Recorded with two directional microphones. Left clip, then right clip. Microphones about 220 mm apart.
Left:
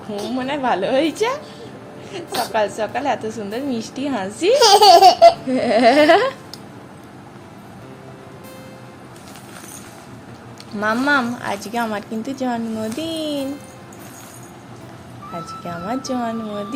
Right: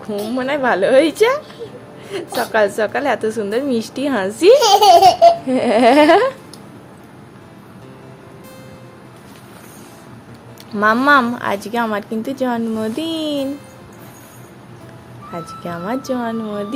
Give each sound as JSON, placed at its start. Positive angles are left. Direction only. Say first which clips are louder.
{"t": 0.3, "sound": "a woman's voice", "louder": "right 4 dB", "side_deg": -30}
{"t": 2.4, "sound": "a woman's voice", "louder": "right 4 dB", "side_deg": -30}
{"t": 4.5, "sound": "laughter", "louder": "left 1 dB", "side_deg": 10}
{"t": 5.5, "sound": "a sound", "louder": "right 2 dB", "side_deg": -15}
{"t": 10.7, "sound": "a woman's voice", "louder": "right 6 dB", "side_deg": -25}
{"t": 15.3, "sound": "a woman's voice", "louder": "right 2 dB", "side_deg": -20}